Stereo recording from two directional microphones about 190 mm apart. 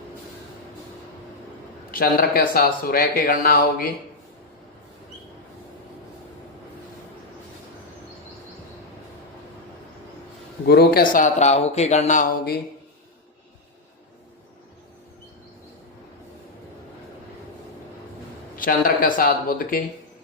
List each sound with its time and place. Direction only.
1.9 s speech: 50° left (ahead or behind)
10.7 s speech: 55° left (ahead or behind)
18.5 s speech: 45° left (ahead or behind)